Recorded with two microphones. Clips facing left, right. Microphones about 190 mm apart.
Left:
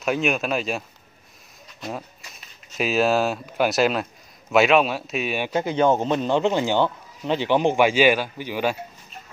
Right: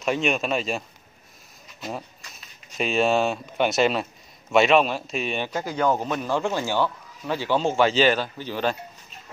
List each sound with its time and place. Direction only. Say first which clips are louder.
0.0 s a man's voice: left 1 dB; centre (ahead or behind)
5.5 s a man's voice: left 5 dB; 20° left (ahead or behind)